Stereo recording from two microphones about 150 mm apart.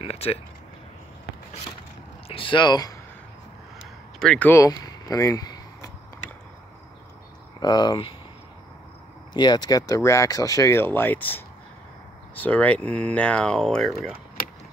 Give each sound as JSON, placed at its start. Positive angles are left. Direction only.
{"t": 0.0, "sound": "speech", "side_deg": 40}
{"t": 2.2, "sound": "speech", "side_deg": 35}
{"t": 4.2, "sound": "speech", "side_deg": 5}
{"t": 4.6, "sound": "a sound", "side_deg": 25}
{"t": 7.6, "sound": "speech", "side_deg": 30}
{"t": 9.3, "sound": "speech", "side_deg": 30}